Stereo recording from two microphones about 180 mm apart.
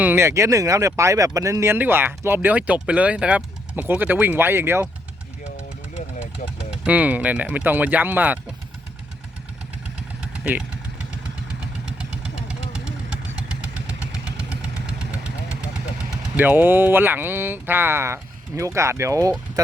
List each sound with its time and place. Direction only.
0.0 s speech: 10° right (ahead or behind)
6.4 s speech: 45° left (ahead or behind)
6.8 s speech: 10° right (ahead or behind)
10.3 s vehicle: 10° right (ahead or behind)
11.9 s vehicle: 5° right (ahead or behind)
14.1 s vehicle: 5° right (ahead or behind)
16.4 s speech: 10° right (ahead or behind)